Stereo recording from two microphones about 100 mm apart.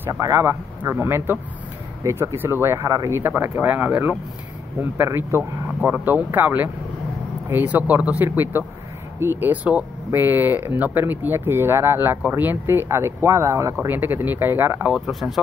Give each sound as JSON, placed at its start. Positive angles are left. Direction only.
{"t": 0.2, "sound": "speech", "side_deg": -30}
{"t": 13.8, "sound": "speech", "side_deg": -20}
{"t": 14.9, "sound": "speech", "side_deg": 0}